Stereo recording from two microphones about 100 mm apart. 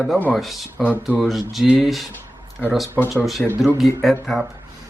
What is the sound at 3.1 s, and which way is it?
Speech, centre (ahead or behind).